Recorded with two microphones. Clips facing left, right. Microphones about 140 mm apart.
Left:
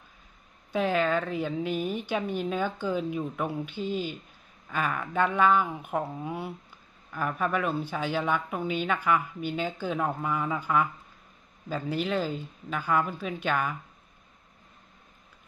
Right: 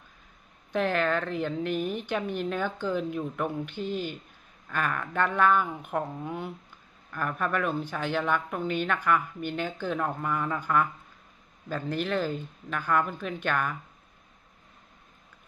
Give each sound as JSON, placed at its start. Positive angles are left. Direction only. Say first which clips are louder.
{"t": 0.7, "sound": "speech", "louder": "left 1 dB", "side_deg": 10}
{"t": 3.8, "sound": "speech", "louder": "left 1 dB", "side_deg": -50}
{"t": 4.6, "sound": "speech", "louder": "even", "side_deg": 10}